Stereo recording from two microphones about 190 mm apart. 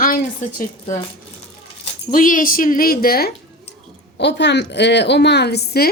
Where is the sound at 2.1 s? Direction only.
45° left (ahead or behind).